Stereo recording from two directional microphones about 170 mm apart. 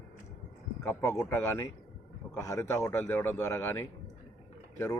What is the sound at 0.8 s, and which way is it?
A man's voice, 15° left (ahead or behind).